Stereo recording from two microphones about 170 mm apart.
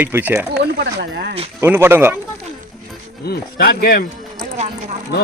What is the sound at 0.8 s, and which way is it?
Speech, 75° right (ahead or behind).